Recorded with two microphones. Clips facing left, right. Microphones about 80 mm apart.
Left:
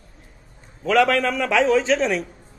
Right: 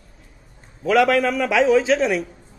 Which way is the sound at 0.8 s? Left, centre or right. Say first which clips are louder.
Right 1 dB; centre.